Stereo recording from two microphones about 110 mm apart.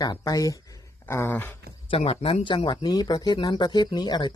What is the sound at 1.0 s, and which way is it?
Speech, 20° left (ahead or behind).